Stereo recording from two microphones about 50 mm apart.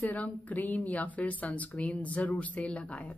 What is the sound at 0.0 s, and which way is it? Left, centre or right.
A woman's voice, left.